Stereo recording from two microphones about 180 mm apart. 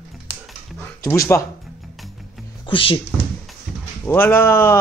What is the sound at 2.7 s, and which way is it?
Speech, 30° left (ahead or behind).